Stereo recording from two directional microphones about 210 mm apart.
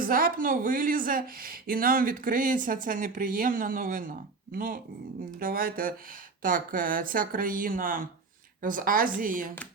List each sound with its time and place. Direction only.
0.0 s a woman's voice: 40° right (ahead or behind)